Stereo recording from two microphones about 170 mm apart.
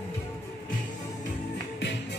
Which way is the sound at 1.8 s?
90° left.